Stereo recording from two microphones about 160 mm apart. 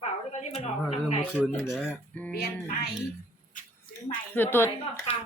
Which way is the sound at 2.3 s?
75° left (ahead or behind).